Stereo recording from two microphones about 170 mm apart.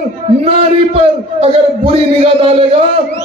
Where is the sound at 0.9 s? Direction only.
35° right (ahead or behind).